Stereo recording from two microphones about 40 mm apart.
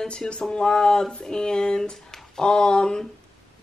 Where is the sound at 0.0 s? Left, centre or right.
Left.